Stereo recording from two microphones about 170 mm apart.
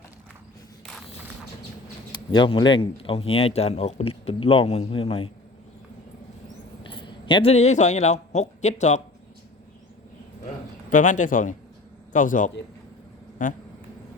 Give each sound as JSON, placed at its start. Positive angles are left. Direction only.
{"t": 2.1, "sound": "speech", "side_deg": 25}
{"t": 6.8, "sound": "a man's voice", "side_deg": 30}
{"t": 10.8, "sound": "a man's voice", "side_deg": 50}